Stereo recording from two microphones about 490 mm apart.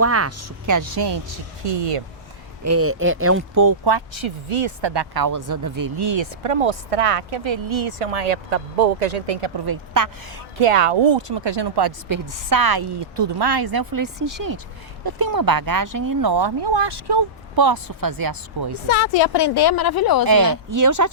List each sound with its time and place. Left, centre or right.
0.0 s speech: right
1.6 s speech: right
2.6 s speech: right
3.6 s speech: right
6.1 s speech: right
9.6 s speech: right
10.6 s speech: right
18.9 s a woman's voice: left
20.2 s speech: right